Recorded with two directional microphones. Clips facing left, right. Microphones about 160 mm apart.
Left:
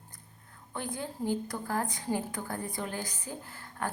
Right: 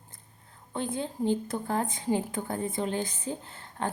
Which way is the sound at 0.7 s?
25° right (ahead or behind).